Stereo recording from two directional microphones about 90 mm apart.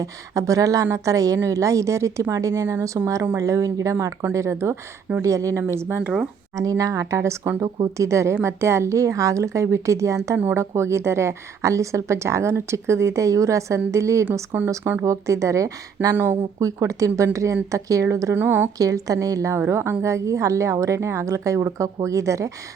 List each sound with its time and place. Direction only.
0.0 s a woman's voice: 40° right (ahead or behind)
10.3 s speech: 20° right (ahead or behind)
10.6 s a woman's voice: 30° right (ahead or behind)
16.1 s speech: 25° right (ahead or behind)
16.6 s a woman's voice: 35° right (ahead or behind)
18.8 s a woman's voice: 40° right (ahead or behind)